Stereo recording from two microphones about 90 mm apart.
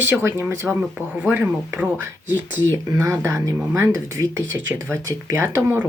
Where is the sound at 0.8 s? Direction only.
5° right (ahead or behind).